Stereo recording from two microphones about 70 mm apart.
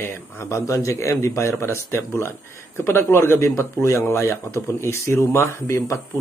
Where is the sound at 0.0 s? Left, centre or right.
Left.